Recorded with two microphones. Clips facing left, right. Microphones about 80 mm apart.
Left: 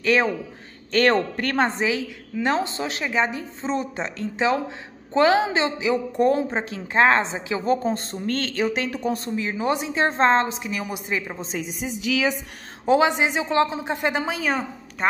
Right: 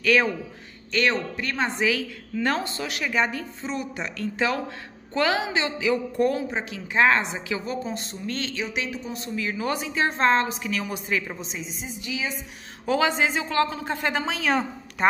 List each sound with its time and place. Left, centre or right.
0.0 s a woman's voice: left
0.9 s a woman's voice: left
1.7 s a woman's voice: left
7.6 s a woman's voice: left
9.3 s a woman's voice: left
11.4 s a woman's voice: left
12.0 s a woman's voice: left
12.8 s a woman's voice: left; by 15.0 s centre